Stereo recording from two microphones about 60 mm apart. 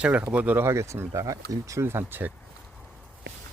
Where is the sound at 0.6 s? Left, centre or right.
Right.